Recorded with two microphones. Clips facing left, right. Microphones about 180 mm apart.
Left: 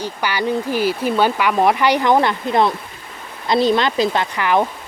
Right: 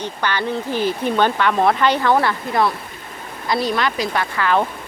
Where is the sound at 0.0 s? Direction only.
10° left (ahead or behind).